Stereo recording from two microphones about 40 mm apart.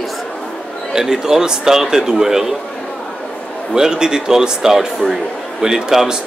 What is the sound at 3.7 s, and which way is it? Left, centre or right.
Speech, centre.